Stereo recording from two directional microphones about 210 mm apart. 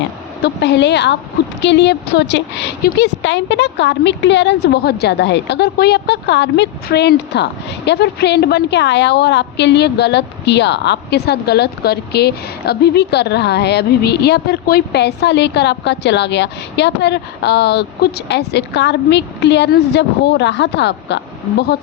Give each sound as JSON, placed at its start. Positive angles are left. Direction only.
{"t": 0.4, "sound": "a woman's voice", "side_deg": 55}